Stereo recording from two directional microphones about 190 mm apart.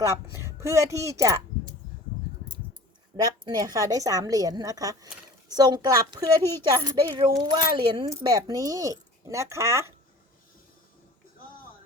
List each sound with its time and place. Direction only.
0.0 s speech: 15° right (ahead or behind)
3.2 s speech: 20° right (ahead or behind)